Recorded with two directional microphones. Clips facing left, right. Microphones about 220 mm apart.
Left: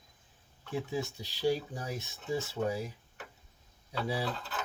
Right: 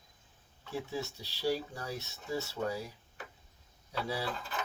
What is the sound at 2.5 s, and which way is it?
Speech, 15° left (ahead or behind).